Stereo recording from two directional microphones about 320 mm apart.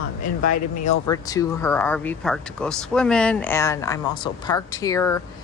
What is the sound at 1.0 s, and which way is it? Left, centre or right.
Speech, centre.